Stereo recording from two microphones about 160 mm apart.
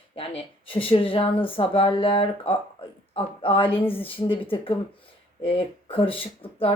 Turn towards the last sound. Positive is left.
turn(degrees=35)  # may be behind; listen again after turning